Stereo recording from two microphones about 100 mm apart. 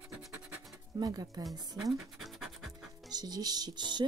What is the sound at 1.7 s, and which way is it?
Pant, centre (ahead or behind).